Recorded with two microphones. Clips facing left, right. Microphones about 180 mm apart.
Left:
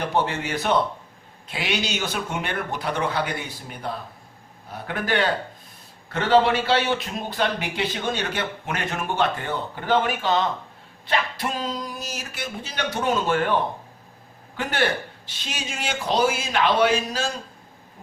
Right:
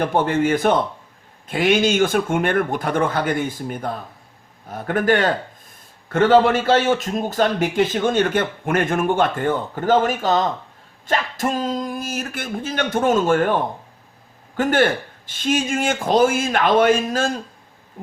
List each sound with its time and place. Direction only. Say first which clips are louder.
0.0 s a man's voice: right 6 dB; 50° right (ahead or behind)